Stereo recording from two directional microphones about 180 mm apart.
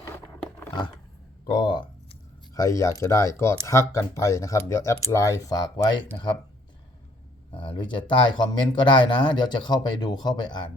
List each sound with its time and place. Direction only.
1.5 s a sound: 25° left (ahead or behind)
2.6 s speech: 15° left (ahead or behind)
7.5 s speech: 25° left (ahead or behind)